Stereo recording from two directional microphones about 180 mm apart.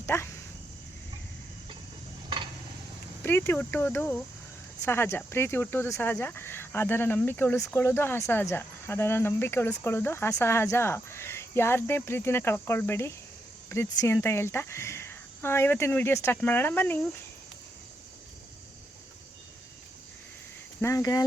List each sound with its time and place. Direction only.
0.0 s speech: 15° left (ahead or behind)
3.2 s speech: 10° left (ahead or behind)
20.8 s speech: 20° left (ahead or behind)